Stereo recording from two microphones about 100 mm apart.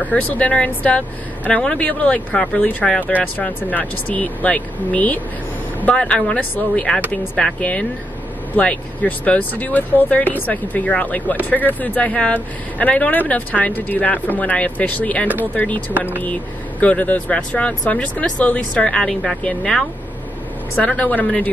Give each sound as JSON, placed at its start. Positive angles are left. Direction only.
{"t": 0.0, "sound": "speech", "side_deg": 15}
{"t": 16.8, "sound": "speech", "side_deg": 15}